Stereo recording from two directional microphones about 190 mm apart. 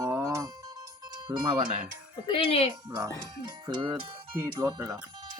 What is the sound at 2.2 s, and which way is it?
Speech, 30° left (ahead or behind).